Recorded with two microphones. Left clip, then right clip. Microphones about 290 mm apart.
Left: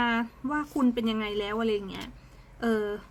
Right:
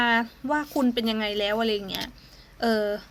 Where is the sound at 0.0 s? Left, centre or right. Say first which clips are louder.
Right 5 dB; centre.